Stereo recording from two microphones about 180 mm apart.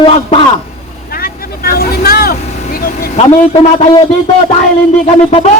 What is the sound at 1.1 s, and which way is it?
Vehicle, 55° left (ahead or behind).